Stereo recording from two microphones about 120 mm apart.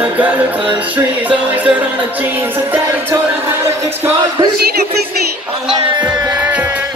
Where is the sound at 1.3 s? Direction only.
10° right (ahead or behind).